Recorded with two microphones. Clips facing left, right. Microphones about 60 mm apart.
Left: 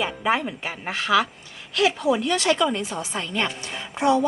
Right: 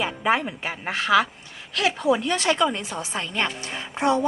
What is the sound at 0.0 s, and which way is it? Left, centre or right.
A woman's voice, centre.